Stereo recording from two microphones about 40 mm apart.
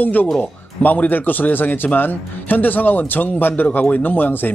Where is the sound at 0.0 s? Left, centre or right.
Left.